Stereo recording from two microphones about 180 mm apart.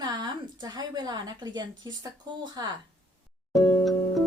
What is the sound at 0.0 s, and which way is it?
A woman's voice, 25° right (ahead or behind).